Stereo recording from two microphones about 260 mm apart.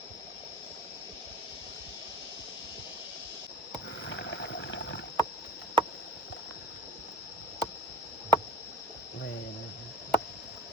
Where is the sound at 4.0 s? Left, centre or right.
Left.